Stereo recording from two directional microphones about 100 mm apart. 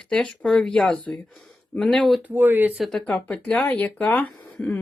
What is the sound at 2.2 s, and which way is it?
Speech, 20° right (ahead or behind).